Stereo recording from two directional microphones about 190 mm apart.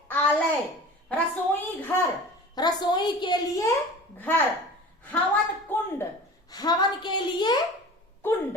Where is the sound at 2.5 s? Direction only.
20° left (ahead or behind).